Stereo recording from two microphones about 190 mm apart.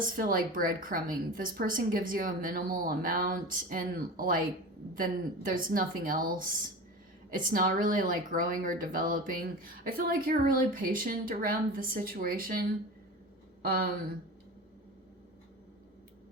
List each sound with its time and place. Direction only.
0.2 s speech: 50° right (ahead or behind)
13.7 s speech: 50° right (ahead or behind)